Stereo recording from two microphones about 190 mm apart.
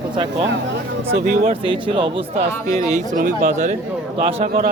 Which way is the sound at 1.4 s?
25° right (ahead or behind).